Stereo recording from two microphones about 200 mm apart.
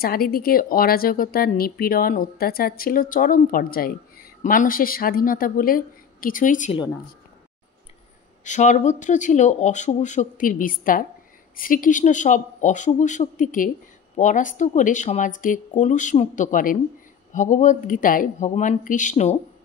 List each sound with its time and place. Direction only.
0.0 s a woman's voice: 50° left (ahead or behind)
8.5 s speech: 35° left (ahead or behind)